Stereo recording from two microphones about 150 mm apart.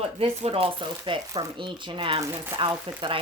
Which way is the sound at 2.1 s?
20° right (ahead or behind).